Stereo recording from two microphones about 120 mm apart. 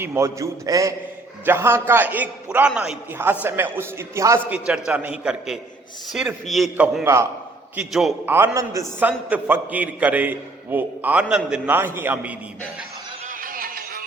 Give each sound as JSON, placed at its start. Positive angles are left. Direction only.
{"t": 0.0, "sound": "a man's voice", "side_deg": -20}
{"t": 3.4, "sound": "a man's voice", "side_deg": -20}
{"t": 4.4, "sound": "a man's voice", "side_deg": -10}
{"t": 6.7, "sound": "a man's voice", "side_deg": -10}
{"t": 8.5, "sound": "a man's voice", "side_deg": -25}
{"t": 9.0, "sound": "a man's voice", "side_deg": -15}
{"t": 11.7, "sound": "a man's voice", "side_deg": -15}